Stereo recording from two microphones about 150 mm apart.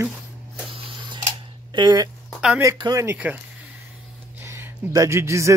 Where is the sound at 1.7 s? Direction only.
30° right (ahead or behind).